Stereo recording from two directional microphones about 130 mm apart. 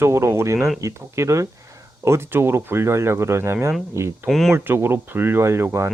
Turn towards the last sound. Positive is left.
turn(degrees=-20)  # may be behind; listen again after turning